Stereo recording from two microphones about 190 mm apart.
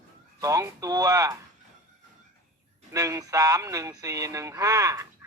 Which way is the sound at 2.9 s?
20° right (ahead or behind).